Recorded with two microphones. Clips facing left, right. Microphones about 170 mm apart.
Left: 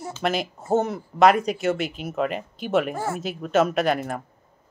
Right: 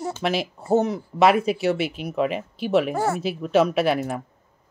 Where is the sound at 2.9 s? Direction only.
75° right (ahead or behind).